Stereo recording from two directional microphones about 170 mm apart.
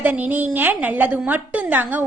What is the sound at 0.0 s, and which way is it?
A woman's voice, 10° right (ahead or behind).